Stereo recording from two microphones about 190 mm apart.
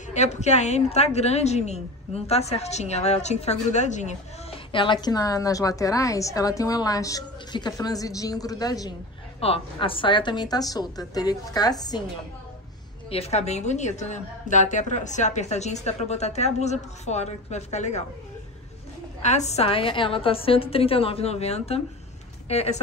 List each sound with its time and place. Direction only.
0.1 s a woman's voice: 35° left (ahead or behind)
4.7 s a woman's voice: 25° left (ahead or behind)
9.4 s a woman's voice: 30° left (ahead or behind)
13.1 s a woman's voice: 35° left (ahead or behind)
19.2 s a woman's voice: 35° left (ahead or behind)